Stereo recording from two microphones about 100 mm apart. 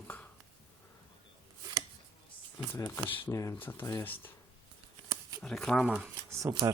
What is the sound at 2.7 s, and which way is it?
Speech, 25° left (ahead or behind).